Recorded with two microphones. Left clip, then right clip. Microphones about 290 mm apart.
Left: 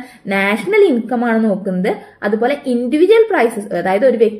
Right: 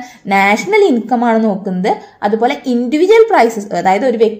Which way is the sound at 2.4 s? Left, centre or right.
Centre.